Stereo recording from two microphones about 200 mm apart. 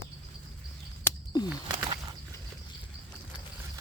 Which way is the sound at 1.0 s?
20° left (ahead or behind).